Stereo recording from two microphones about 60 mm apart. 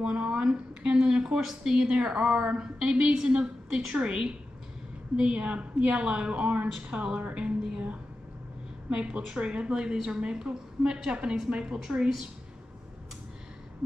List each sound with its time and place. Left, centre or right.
0.0 s a woman's voice: centre